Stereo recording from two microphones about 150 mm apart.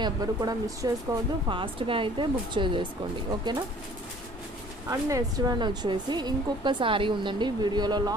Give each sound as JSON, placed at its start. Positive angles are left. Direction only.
{"t": 0.0, "sound": "speech", "side_deg": -25}
{"t": 1.6, "sound": "a woman's voice", "side_deg": -35}
{"t": 4.8, "sound": "speech", "side_deg": -25}